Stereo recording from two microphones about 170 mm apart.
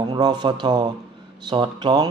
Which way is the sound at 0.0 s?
25° right (ahead or behind).